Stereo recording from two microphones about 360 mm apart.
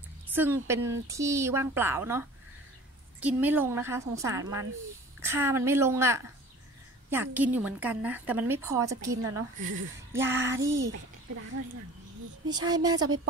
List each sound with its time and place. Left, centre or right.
0.3 s a woman's voice: centre
9.2 s speech: right
10.1 s speech: centre
12.4 s speech: centre
13.0 s speech: right